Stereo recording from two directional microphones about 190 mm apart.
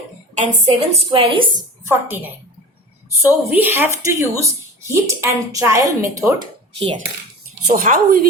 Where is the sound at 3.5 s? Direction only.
10° right (ahead or behind).